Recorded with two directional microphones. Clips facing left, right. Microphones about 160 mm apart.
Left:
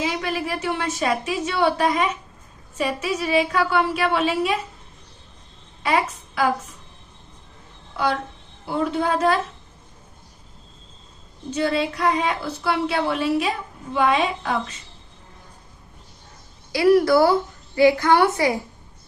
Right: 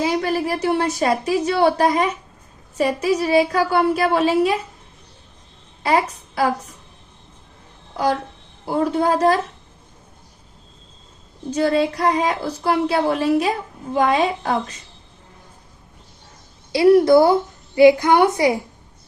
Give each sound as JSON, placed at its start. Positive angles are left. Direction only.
{"t": 0.0, "sound": "a woman's voice", "side_deg": -40}
{"t": 5.8, "sound": "a woman's voice", "side_deg": -35}
{"t": 8.6, "sound": "a woman's voice", "side_deg": -40}
{"t": 11.5, "sound": "a woman's voice", "side_deg": -40}
{"t": 16.7, "sound": "a woman's voice", "side_deg": -25}